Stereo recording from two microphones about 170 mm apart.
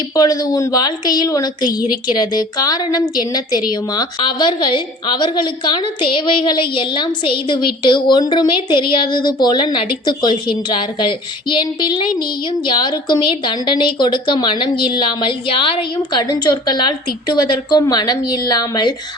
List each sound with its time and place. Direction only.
0.2 s a woman's voice: 20° left (ahead or behind)